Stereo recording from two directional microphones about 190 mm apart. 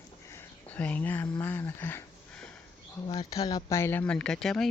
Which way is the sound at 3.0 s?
30° left (ahead or behind).